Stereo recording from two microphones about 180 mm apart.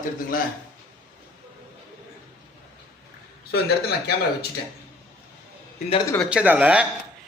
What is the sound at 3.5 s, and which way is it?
Speech, 65° left (ahead or behind).